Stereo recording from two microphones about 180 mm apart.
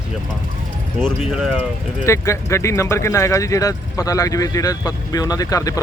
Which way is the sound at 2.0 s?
15° left (ahead or behind).